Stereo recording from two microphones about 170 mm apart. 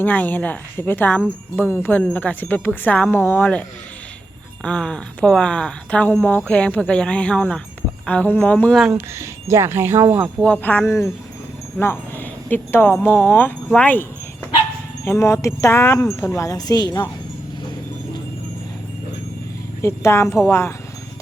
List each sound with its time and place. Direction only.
0.0 s speech: 10° left (ahead or behind)
4.6 s speech: 5° left (ahead or behind)
8.9 s speech: 15° right (ahead or behind)
10.4 s speech: 10° left (ahead or behind)
15.0 s a woman's voice: 15° left (ahead or behind)
19.8 s speech: 15° left (ahead or behind)